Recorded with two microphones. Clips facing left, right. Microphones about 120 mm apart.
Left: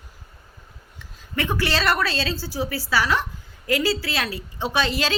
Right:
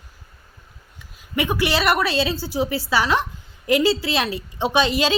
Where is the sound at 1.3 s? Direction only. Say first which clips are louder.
Right 3 dB; 15° right (ahead or behind).